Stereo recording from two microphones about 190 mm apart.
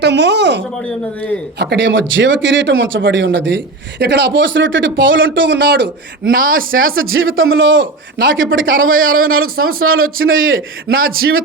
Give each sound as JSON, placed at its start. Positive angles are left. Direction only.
{"t": 0.0, "sound": "speech", "side_deg": -65}
{"t": 0.8, "sound": "speech", "side_deg": 5}
{"t": 1.5, "sound": "speech", "side_deg": -60}
{"t": 6.9, "sound": "a man's voice", "side_deg": -90}
{"t": 10.8, "sound": "speech", "side_deg": -50}